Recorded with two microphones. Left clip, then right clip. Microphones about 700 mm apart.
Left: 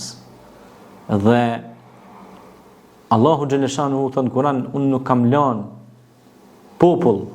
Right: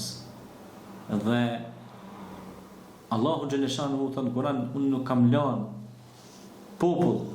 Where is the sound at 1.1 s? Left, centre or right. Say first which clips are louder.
Left 12 dB; left.